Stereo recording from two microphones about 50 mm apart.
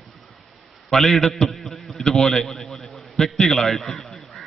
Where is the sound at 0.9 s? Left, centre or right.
Centre.